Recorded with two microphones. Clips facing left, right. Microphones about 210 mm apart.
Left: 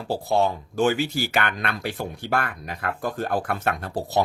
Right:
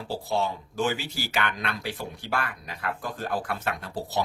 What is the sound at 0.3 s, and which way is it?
Speech, 50° left (ahead or behind).